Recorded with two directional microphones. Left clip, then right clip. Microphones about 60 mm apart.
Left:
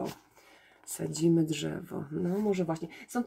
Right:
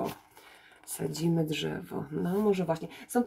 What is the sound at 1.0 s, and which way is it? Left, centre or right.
Speech, left.